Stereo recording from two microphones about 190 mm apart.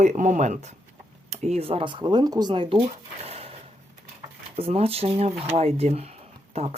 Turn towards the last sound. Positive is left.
turn(degrees=-30)  # may be behind; listen again after turning